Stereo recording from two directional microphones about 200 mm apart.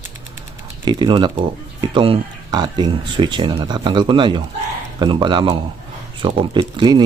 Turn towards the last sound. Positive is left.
turn(degrees=-25)  # may be behind; listen again after turning